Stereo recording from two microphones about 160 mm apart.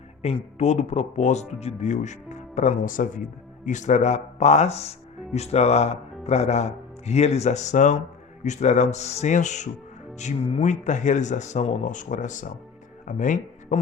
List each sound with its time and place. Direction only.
0.2 s speech: 40° left (ahead or behind)